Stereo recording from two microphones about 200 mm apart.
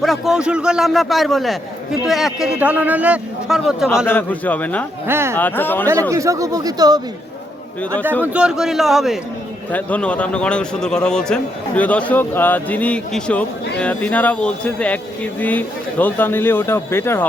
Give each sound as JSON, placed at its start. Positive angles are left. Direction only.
{"t": 0.0, "sound": "a man's voice", "side_deg": 0}
{"t": 4.0, "sound": "a man's voice", "side_deg": 10}
{"t": 5.0, "sound": "speech", "side_deg": -10}
{"t": 5.4, "sound": "a man's voice", "side_deg": 10}
{"t": 5.9, "sound": "speech", "side_deg": -15}
{"t": 8.2, "sound": "a man's voice", "side_deg": -5}